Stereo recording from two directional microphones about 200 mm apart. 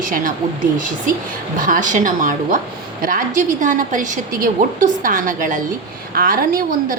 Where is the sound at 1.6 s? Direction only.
40° right (ahead or behind).